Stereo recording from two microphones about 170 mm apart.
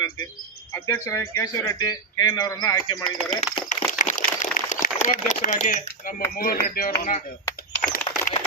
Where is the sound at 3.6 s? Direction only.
45° left (ahead or behind).